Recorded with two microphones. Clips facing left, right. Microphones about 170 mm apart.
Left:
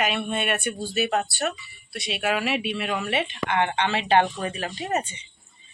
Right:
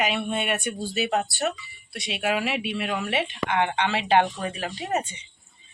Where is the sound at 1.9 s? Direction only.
20° right (ahead or behind).